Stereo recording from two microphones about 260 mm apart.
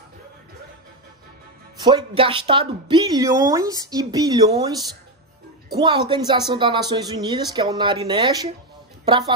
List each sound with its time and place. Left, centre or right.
1.8 s a woman's voice: centre